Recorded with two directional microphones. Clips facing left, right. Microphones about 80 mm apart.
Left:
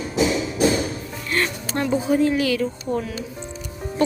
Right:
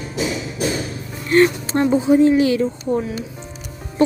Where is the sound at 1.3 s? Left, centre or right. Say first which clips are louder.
Right 10 dB; right.